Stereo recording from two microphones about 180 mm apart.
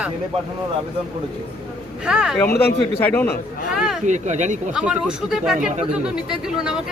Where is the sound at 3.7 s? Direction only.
5° right (ahead or behind).